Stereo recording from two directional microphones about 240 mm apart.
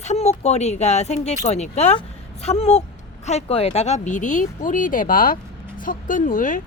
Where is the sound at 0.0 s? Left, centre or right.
Left.